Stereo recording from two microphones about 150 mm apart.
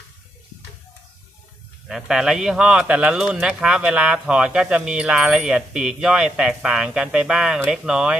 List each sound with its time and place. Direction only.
1.9 s speech: centre (ahead or behind)